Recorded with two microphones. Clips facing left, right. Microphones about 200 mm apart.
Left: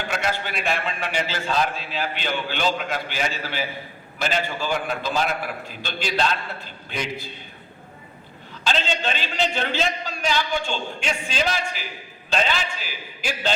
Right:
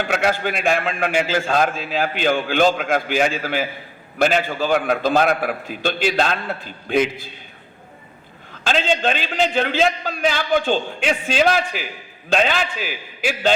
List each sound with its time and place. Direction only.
0.1 s a man's voice: 55° right (ahead or behind)
8.6 s a man's voice: 50° right (ahead or behind)